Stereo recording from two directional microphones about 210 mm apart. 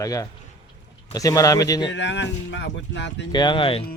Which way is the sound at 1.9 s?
55° left (ahead or behind).